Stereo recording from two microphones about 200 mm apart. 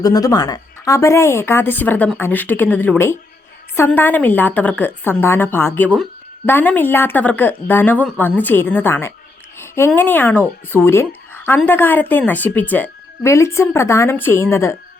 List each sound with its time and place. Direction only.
0.0 s a woman's voice: 20° left (ahead or behind)